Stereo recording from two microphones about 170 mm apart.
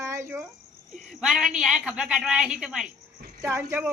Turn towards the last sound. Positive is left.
turn(degrees=-10)  # may be behind; listen again after turning